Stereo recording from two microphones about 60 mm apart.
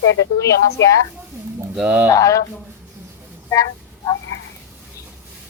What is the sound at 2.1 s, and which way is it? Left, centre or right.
Speech, left.